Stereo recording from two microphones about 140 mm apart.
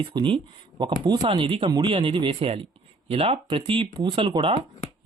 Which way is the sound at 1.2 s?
45° right (ahead or behind).